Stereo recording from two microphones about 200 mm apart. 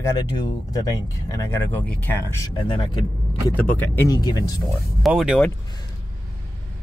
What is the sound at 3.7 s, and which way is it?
Speech, 10° left (ahead or behind).